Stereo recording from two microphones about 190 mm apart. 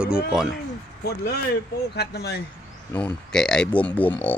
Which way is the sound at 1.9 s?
55° left (ahead or behind).